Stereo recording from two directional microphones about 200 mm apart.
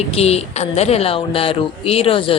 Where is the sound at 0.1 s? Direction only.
30° left (ahead or behind).